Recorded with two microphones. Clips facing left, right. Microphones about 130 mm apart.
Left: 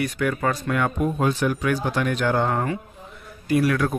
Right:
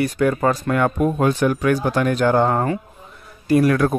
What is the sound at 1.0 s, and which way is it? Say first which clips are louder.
Speech: right 4 dB; 55° right (ahead or behind).